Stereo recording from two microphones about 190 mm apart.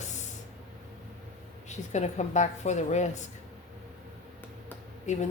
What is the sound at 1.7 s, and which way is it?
Speech, 35° left (ahead or behind).